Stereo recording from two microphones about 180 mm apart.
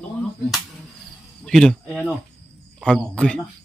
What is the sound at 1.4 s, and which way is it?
A man's voice, 5° left (ahead or behind).